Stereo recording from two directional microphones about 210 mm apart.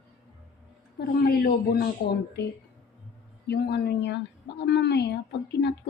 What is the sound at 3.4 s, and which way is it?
A woman's voice, 50° left (ahead or behind).